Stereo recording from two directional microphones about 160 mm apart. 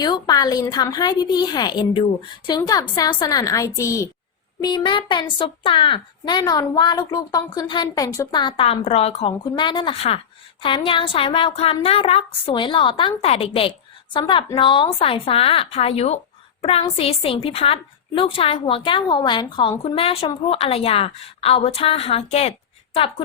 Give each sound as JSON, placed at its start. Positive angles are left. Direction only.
{"t": 0.0, "sound": "a woman's voice", "side_deg": 25}